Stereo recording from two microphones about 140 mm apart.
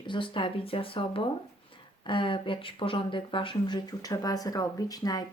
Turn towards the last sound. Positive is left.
turn(degrees=25)  # may be behind; listen again after turning